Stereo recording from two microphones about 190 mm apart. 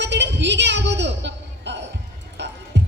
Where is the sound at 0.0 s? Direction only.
65° right (ahead or behind).